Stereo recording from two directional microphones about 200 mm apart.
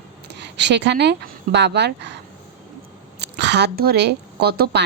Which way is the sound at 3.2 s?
60° right (ahead or behind).